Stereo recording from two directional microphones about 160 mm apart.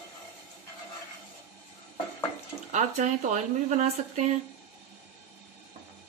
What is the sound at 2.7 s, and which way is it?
Speech, 50° right (ahead or behind).